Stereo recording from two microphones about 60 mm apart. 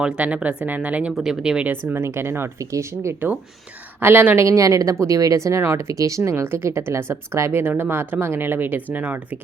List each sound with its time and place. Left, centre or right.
0.0 s speech: centre
1.1 s speech: centre
1.9 s speech: right
2.6 s speech: right
4.0 s speech: right
4.4 s speech: right
7.6 s speech: right